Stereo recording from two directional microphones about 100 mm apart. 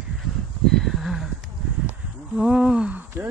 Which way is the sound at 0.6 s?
5° left (ahead or behind).